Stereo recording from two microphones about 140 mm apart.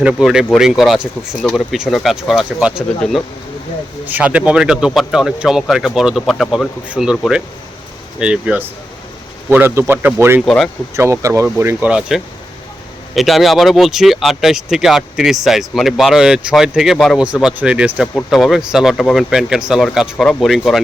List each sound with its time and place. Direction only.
0.0 s speech: 5° right (ahead or behind)
4.0 s a man's voice: 10° right (ahead or behind)
8.2 s a man's voice: 10° right (ahead or behind)
10.4 s speech: centre (ahead or behind)
10.9 s speech: 20° right (ahead or behind)
11.9 s speech: 5° right (ahead or behind)